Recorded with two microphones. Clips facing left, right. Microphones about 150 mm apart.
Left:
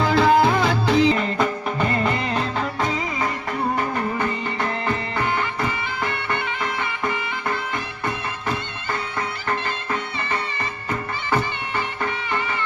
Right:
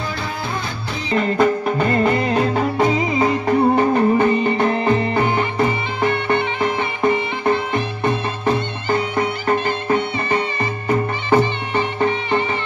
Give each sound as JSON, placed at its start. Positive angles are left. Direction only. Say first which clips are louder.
{"t": 0.0, "sound": "music", "louder": "left 10 dB", "side_deg": 90}
{"t": 1.2, "sound": "music", "louder": "right 6 dB", "side_deg": 0}
{"t": 2.4, "sound": "music", "louder": "right 7 dB", "side_deg": -15}